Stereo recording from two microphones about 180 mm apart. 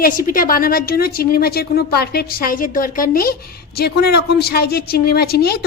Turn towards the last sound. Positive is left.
turn(degrees=60)  # may be behind; listen again after turning